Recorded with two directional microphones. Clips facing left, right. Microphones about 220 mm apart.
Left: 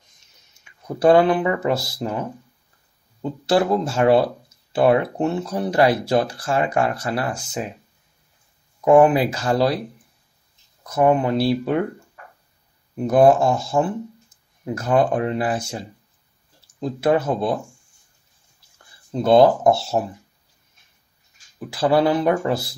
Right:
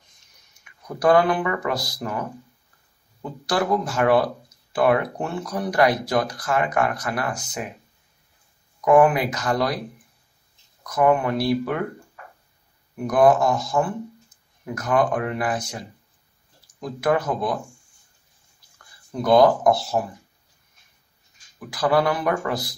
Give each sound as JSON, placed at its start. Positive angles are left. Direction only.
{"t": 0.6, "sound": "speech", "side_deg": 25}
{"t": 8.8, "sound": "speech", "side_deg": 25}
{"t": 10.8, "sound": "speech", "side_deg": 25}
{"t": 12.9, "sound": "speech", "side_deg": 25}
{"t": 18.8, "sound": "speech", "side_deg": 25}
{"t": 21.5, "sound": "speech", "side_deg": 25}